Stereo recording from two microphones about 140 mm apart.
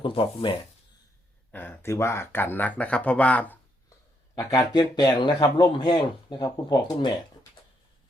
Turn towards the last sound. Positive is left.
turn(degrees=30)  # may be behind; listen again after turning